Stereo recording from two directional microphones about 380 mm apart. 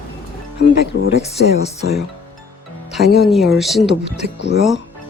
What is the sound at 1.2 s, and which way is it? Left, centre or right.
Speech, centre.